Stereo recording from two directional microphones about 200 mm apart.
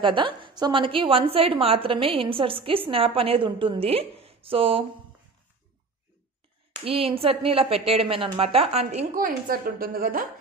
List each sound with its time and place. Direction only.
0.0 s a woman's voice: 25° right (ahead or behind)
6.8 s a woman's voice: 30° right (ahead or behind); by 10.2 s 45° right (ahead or behind)